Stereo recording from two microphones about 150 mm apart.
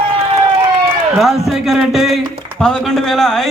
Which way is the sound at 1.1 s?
Centre (ahead or behind).